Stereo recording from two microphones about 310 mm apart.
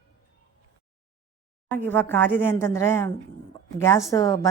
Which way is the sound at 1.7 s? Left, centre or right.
Centre.